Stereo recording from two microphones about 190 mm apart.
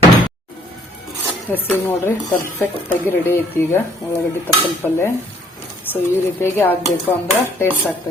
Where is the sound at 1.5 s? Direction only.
10° left (ahead or behind).